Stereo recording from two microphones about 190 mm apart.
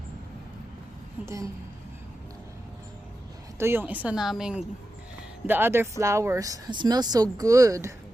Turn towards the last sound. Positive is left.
turn(degrees=-15)  # may be behind; listen again after turning